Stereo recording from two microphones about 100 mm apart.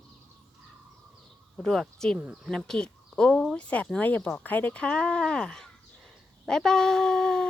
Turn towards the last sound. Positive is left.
turn(degrees=10)  # may be behind; listen again after turning